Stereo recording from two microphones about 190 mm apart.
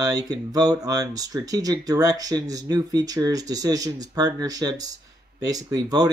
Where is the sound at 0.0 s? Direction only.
20° right (ahead or behind).